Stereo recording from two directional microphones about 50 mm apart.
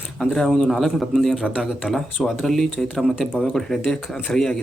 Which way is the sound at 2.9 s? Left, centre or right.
Centre.